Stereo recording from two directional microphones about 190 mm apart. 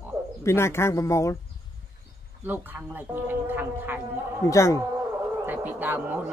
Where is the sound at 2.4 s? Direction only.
10° right (ahead or behind).